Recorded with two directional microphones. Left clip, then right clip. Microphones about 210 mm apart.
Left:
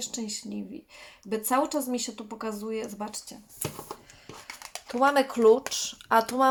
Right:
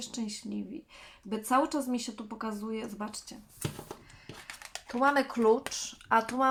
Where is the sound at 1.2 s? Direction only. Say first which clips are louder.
Left 2 dB; 15° left (ahead or behind).